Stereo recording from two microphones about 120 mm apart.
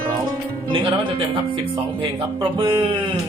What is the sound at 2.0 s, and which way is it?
Speech, 45° right (ahead or behind).